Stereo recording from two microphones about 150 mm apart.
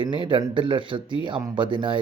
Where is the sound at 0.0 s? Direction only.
30° right (ahead or behind).